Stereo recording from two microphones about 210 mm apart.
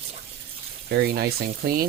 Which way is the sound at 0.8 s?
50° right (ahead or behind).